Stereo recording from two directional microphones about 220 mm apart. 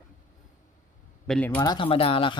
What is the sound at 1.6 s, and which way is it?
Speech, 20° left (ahead or behind).